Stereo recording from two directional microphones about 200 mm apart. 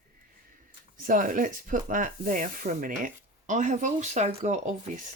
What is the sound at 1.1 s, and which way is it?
Speech, 40° right (ahead or behind).